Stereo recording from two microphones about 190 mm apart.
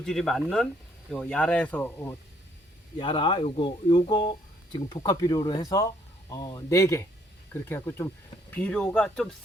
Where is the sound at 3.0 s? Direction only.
25° left (ahead or behind).